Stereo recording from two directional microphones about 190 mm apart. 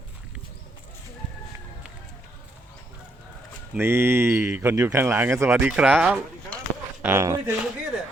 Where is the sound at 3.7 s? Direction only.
15° right (ahead or behind).